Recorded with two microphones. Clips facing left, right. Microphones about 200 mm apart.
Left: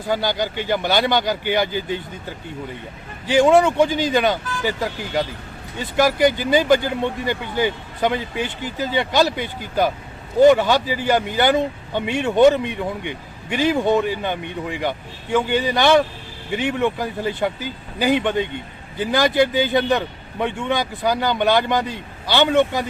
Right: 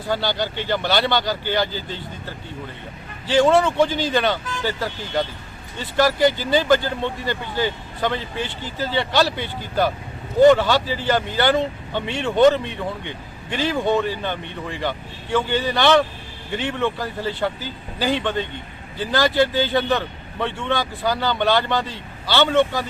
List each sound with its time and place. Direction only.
0.1 s speech: 15° left (ahead or behind)
3.2 s speech: 15° left (ahead or behind)
6.0 s speech: 15° left (ahead or behind)